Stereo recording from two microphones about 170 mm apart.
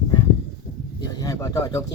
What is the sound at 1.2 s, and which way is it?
Speech, 20° left (ahead or behind).